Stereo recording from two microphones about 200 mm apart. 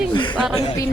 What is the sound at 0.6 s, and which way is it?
Speech, 25° left (ahead or behind).